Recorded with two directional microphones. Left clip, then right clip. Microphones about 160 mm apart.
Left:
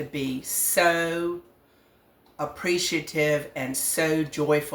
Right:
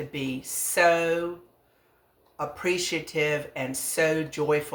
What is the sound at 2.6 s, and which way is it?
Speech, 20° right (ahead or behind).